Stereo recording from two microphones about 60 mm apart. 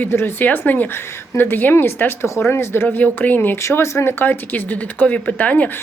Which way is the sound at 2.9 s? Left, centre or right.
Left.